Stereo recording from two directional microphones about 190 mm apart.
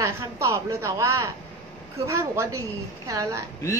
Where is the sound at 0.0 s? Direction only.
15° right (ahead or behind).